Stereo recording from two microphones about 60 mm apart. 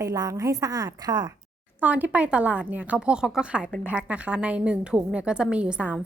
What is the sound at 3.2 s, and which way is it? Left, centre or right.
A woman's voice, centre.